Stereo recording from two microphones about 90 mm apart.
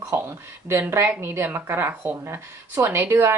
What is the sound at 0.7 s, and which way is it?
Speech, 30° right (ahead or behind).